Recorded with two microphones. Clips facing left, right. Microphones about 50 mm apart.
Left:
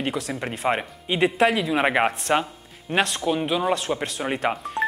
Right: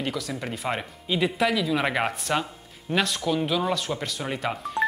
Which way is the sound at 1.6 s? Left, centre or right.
Left.